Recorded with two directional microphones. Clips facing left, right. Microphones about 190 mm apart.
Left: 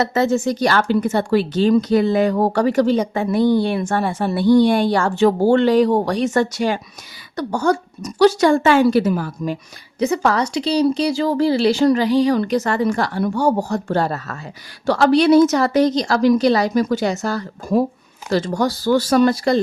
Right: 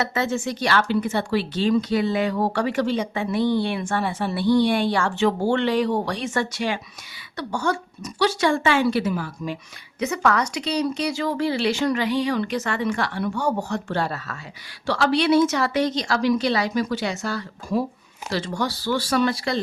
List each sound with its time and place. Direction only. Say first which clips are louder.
0.0 s a woman's voice: left 7 dB; 40° left (ahead or behind)
10.0 s a woman's voice: left 4 dB; 30° left (ahead or behind)